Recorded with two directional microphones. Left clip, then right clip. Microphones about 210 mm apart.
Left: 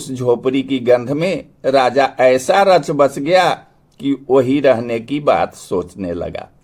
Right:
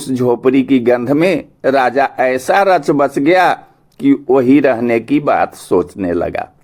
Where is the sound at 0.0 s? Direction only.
20° right (ahead or behind).